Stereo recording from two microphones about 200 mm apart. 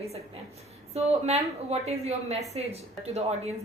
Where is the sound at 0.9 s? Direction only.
30° right (ahead or behind).